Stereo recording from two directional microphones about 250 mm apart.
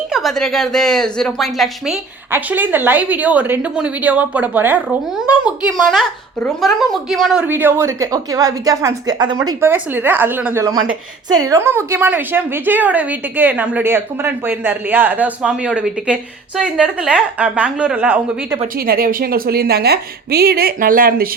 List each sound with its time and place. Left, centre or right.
0.1 s speech: centre
18.9 s a woman's voice: right